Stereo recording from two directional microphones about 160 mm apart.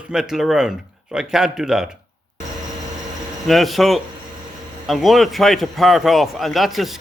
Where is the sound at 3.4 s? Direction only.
Centre (ahead or behind).